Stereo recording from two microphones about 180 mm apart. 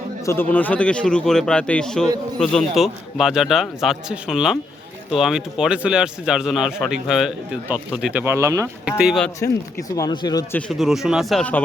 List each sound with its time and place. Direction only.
0.3 s a man's voice: 10° left (ahead or behind); by 8.7 s 15° right (ahead or behind)
8.8 s a man's voice: 5° right (ahead or behind)
9.9 s speech: 25° left (ahead or behind)
10.7 s a man's voice: centre (ahead or behind)